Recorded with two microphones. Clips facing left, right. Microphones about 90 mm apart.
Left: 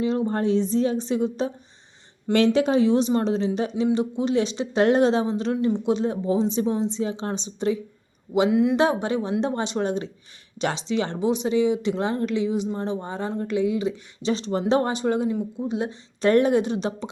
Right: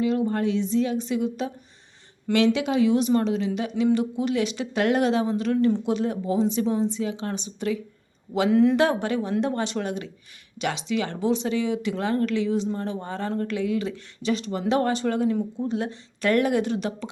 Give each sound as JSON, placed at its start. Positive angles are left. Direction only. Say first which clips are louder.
{"t": 0.0, "sound": "a woman's voice", "louder": "even", "side_deg": 30}
{"t": 8.4, "sound": "speech", "louder": "right 3 dB", "side_deg": 5}
{"t": 8.7, "sound": "speech", "louder": "left 1 dB", "side_deg": 20}
{"t": 11.2, "sound": "speech", "louder": "left 4 dB", "side_deg": 15}